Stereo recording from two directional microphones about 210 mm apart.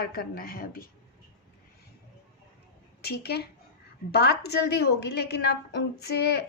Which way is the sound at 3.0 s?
50° left (ahead or behind).